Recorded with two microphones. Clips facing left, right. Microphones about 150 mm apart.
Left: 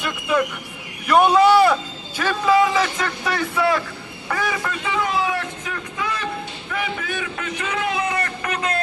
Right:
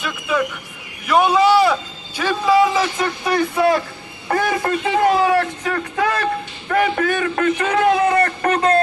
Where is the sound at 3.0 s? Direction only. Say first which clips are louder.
Right 5 dB; 10° right (ahead or behind).